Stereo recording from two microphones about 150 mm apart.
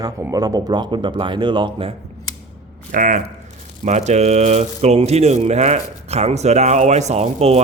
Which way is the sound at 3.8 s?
50° right (ahead or behind).